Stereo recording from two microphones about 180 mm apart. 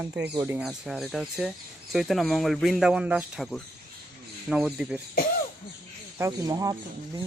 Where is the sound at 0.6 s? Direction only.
Centre (ahead or behind).